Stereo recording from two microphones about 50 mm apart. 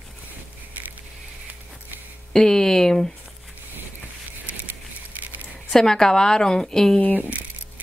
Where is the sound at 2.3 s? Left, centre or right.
Centre.